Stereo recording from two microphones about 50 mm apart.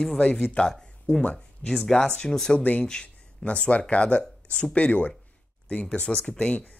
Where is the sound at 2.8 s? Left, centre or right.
Centre.